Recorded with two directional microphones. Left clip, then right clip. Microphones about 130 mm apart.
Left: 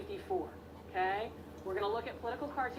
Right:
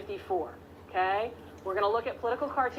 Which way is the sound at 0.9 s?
15° left (ahead or behind).